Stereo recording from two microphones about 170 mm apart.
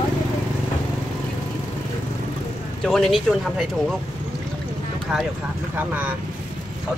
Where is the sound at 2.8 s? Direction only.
Centre (ahead or behind).